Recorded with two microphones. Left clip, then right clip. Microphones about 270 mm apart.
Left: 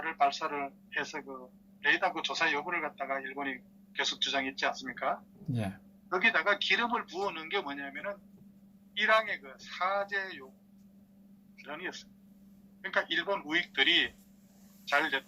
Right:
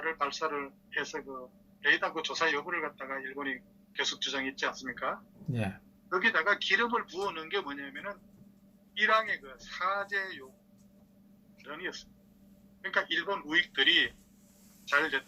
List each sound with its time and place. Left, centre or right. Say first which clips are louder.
0.0 s a man's voice: left 3 dB; left
5.5 s speech: right 1 dB; centre
6.1 s a man's voice: even; left
11.6 s a man's voice: right 1 dB; left